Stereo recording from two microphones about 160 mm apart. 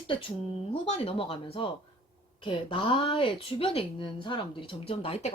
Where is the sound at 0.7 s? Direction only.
35° left (ahead or behind).